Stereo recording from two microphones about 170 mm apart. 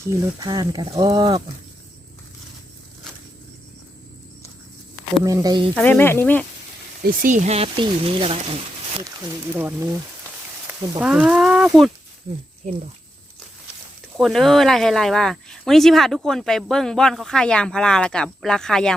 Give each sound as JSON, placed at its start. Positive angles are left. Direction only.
{"t": 0.1, "sound": "speech", "side_deg": -20}
{"t": 5.2, "sound": "speech", "side_deg": -20}
{"t": 5.7, "sound": "speech", "side_deg": 10}
{"t": 7.0, "sound": "speech", "side_deg": -50}
{"t": 9.6, "sound": "speech", "side_deg": -15}
{"t": 14.2, "sound": "speech", "side_deg": 0}